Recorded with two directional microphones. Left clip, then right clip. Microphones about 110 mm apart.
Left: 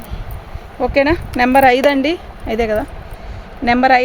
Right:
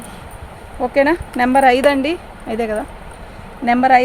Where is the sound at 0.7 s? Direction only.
75° left (ahead or behind).